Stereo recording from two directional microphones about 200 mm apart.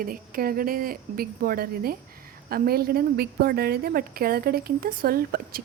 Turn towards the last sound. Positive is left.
turn(degrees=-45)  # may be behind; listen again after turning